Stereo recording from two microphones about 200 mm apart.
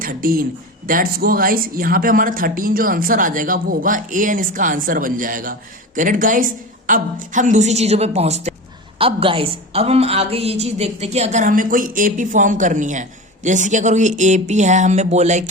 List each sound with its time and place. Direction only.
0.0 s a woman's voice: 45° right (ahead or behind)